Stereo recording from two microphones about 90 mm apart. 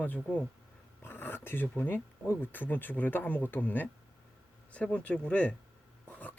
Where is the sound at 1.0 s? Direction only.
25° left (ahead or behind).